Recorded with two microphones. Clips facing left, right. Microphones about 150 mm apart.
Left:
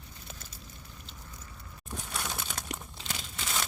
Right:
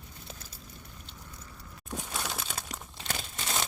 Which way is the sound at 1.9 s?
15° right (ahead or behind).